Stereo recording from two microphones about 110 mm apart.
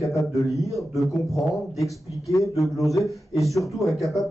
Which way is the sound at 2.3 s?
30° left (ahead or behind).